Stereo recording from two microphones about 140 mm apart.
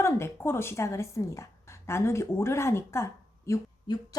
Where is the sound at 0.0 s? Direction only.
15° left (ahead or behind).